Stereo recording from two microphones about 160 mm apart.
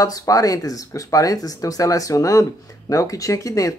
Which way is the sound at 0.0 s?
20° left (ahead or behind).